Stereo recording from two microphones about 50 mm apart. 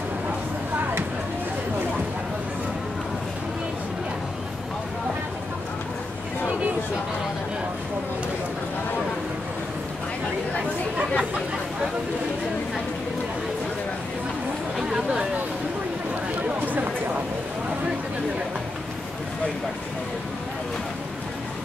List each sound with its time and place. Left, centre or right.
11.0 s chatter: centre
14.8 s chatter: centre
16.6 s a sound: right